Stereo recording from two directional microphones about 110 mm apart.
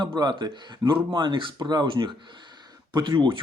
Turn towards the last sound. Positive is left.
turn(degrees=-50)  # may be behind; listen again after turning